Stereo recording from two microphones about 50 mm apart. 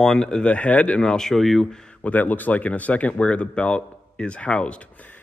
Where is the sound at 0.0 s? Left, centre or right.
Centre.